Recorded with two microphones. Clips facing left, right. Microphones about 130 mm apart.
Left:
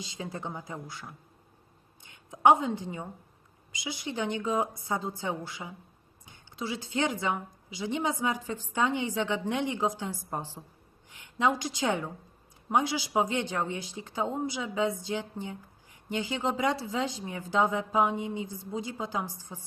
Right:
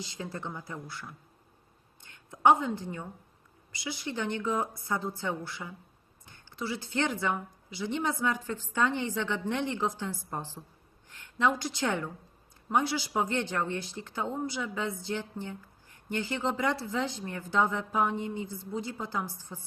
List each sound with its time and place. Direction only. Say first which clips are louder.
0.0 s a woman's voice: left 1 dB; 15° left (ahead or behind)